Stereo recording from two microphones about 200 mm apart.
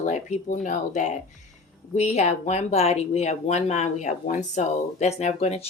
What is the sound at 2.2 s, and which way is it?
Speech, 35° left (ahead or behind).